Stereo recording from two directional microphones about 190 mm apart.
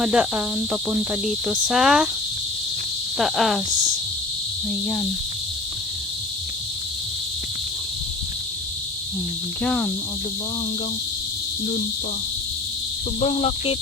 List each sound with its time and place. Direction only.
0.0 s cricket: 5° right (ahead or behind)
3.2 s cricket: centre (ahead or behind)
9.6 s cricket: 5° left (ahead or behind)
13.1 s speech: 30° left (ahead or behind)